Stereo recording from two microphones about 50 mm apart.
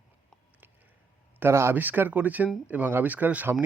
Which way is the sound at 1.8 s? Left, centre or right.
Right.